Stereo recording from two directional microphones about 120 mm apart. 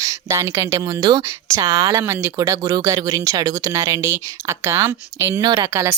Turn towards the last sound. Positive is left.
turn(degrees=-25)  # may be behind; listen again after turning